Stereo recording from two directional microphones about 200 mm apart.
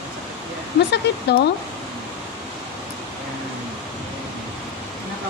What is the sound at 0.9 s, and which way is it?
Speech, 55° left (ahead or behind).